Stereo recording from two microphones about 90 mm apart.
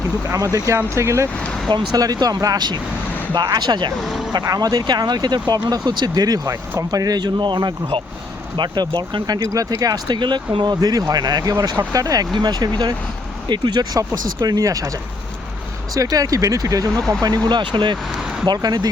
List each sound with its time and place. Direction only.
0.3 s speech: 35° right (ahead or behind)
1.7 s speech: 45° right (ahead or behind)
4.0 s speech: centre (ahead or behind)
4.3 s speech: 45° right (ahead or behind); by 8.0 s 70° right (ahead or behind)
8.5 s speech: 55° right (ahead or behind)
9.4 s speech: 40° right (ahead or behind)
10.1 s speech: 60° right (ahead or behind); by 12.3 s 40° right (ahead or behind)
12.4 s speech: 50° right (ahead or behind)
16.0 s speech: 40° right (ahead or behind); by 17.9 s 60° right (ahead or behind)
18.4 s speech: 50° right (ahead or behind)